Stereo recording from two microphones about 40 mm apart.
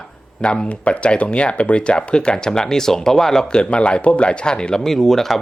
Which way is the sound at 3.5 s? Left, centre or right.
Left.